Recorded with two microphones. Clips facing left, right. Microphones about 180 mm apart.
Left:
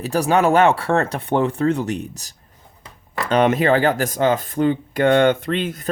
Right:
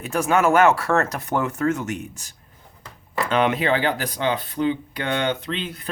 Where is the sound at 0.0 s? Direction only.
35° left (ahead or behind).